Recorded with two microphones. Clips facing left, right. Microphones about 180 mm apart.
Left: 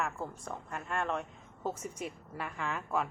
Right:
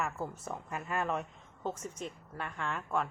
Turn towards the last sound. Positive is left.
turn(degrees=5)  # may be behind; listen again after turning